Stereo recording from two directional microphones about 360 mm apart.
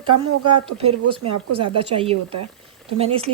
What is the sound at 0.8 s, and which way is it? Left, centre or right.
Speech, centre.